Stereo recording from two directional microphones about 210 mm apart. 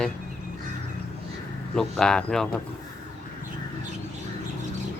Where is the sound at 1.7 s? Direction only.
Centre (ahead or behind).